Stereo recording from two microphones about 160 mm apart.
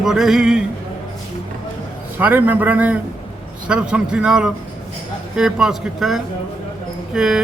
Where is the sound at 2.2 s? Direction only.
10° right (ahead or behind).